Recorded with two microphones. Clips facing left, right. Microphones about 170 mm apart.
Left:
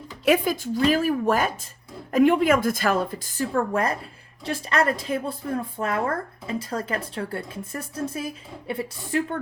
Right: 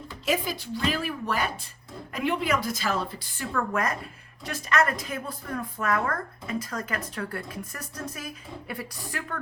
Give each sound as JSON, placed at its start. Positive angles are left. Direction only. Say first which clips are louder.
{"t": 0.3, "sound": "a woman's voice", "louder": "left 7 dB", "side_deg": 50}